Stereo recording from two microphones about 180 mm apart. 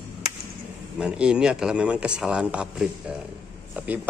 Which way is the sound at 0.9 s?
5° right (ahead or behind).